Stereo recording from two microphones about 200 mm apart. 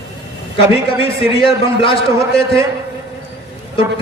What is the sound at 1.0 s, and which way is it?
A man's voice, 25° left (ahead or behind).